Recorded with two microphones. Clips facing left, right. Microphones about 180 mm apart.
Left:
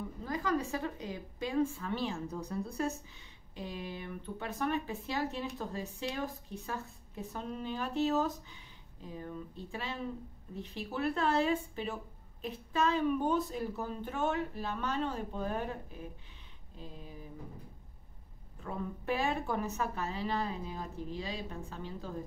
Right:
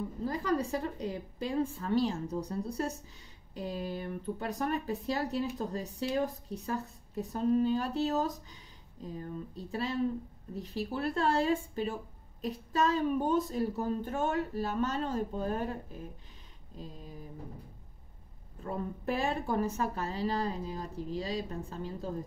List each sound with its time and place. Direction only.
0.2 s speech: 35° right (ahead or behind)
16.7 s speech: 40° right (ahead or behind)
18.6 s speech: 35° right (ahead or behind)